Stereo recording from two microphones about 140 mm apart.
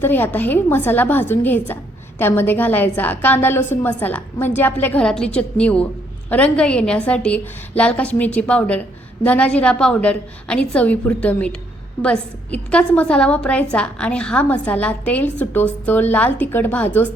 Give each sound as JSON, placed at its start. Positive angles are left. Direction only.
{"t": 0.0, "sound": "a woman's voice", "side_deg": 15}